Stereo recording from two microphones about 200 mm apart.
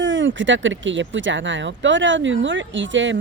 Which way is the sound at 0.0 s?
70° right (ahead or behind).